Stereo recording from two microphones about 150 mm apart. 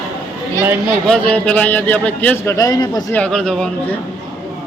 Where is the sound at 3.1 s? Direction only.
5° left (ahead or behind).